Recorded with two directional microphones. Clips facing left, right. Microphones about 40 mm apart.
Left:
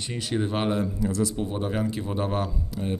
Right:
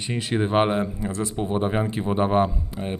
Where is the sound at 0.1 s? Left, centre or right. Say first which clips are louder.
Right 5 dB; right.